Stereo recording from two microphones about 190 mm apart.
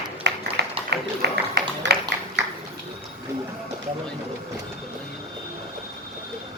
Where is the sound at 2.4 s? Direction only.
70° right (ahead or behind).